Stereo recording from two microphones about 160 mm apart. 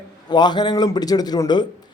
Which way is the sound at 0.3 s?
30° left (ahead or behind).